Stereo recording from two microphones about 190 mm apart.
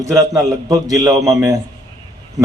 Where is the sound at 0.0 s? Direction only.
15° right (ahead or behind).